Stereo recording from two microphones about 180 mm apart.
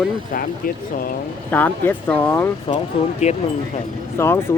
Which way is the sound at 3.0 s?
30° left (ahead or behind).